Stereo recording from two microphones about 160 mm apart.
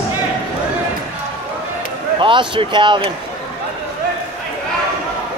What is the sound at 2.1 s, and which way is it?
Speech, 30° right (ahead or behind).